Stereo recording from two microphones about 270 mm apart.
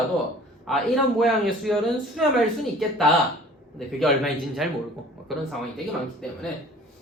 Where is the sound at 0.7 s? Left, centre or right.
Centre.